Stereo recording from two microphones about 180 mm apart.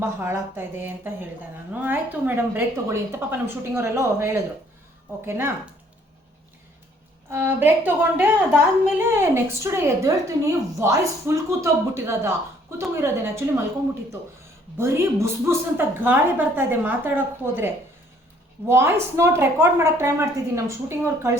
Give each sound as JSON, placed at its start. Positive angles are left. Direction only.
{"t": 0.0, "sound": "speech", "side_deg": -15}
{"t": 7.3, "sound": "speech", "side_deg": -10}
{"t": 14.8, "sound": "speech", "side_deg": -15}
{"t": 18.7, "sound": "speech", "side_deg": -15}